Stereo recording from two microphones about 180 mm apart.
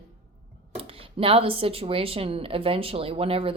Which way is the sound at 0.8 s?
30° right (ahead or behind).